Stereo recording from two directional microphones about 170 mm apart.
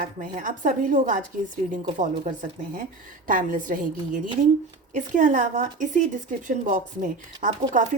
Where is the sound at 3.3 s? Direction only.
50° right (ahead or behind).